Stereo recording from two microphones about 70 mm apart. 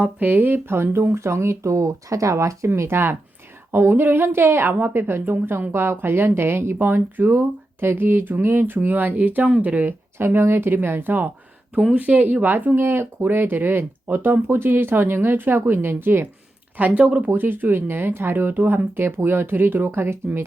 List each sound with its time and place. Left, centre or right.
0.0 s a woman's voice: right
2.6 s a woman's voice: right